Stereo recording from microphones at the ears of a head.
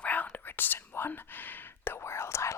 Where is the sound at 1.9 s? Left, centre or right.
Left.